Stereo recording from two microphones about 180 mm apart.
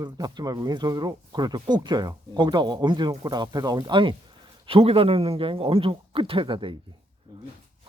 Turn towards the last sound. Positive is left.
turn(degrees=-25)  # may be behind; listen again after turning